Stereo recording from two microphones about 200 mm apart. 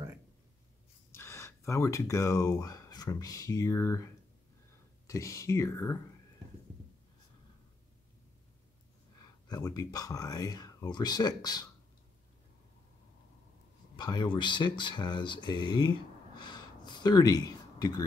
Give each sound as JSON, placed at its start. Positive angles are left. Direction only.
{"t": 1.1, "sound": "speech", "side_deg": 10}
{"t": 9.5, "sound": "speech", "side_deg": 20}
{"t": 13.9, "sound": "speech", "side_deg": 20}
{"t": 16.3, "sound": "a sound", "side_deg": 20}